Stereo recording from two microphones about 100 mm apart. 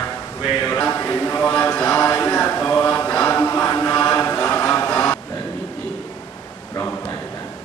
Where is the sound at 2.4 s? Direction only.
20° left (ahead or behind).